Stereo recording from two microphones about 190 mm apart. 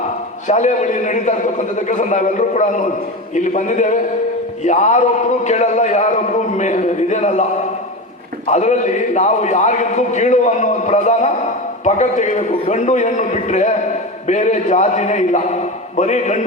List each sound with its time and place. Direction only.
0.4 s a man's voice: 40° left (ahead or behind)
8.4 s a man's voice: 40° left (ahead or behind)